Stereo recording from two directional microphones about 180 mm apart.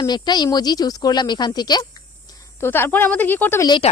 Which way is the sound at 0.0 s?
25° left (ahead or behind).